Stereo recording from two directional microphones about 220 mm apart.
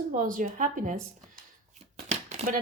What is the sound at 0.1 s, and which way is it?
Speech, 35° right (ahead or behind).